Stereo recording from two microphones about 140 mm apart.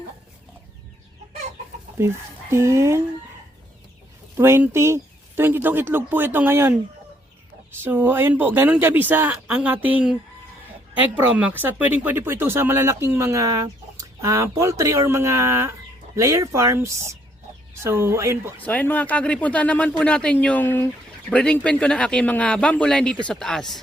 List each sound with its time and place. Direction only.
2.0 s speech: 20° right (ahead or behind)
4.4 s speech: 15° right (ahead or behind)
7.8 s speech: 15° right (ahead or behind)
18.5 s speech: 10° left (ahead or behind)